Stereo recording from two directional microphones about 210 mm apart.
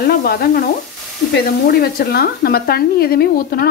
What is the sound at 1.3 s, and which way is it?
A woman's voice, 50° left (ahead or behind).